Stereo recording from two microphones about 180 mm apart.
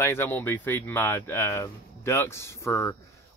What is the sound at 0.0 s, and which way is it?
Speech, 10° left (ahead or behind).